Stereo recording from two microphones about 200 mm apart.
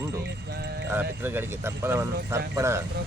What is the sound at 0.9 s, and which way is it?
Speech, 10° right (ahead or behind).